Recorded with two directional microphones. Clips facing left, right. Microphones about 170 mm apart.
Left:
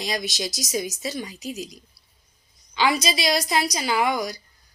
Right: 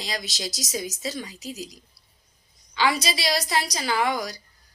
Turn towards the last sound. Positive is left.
turn(degrees=15)  # may be behind; listen again after turning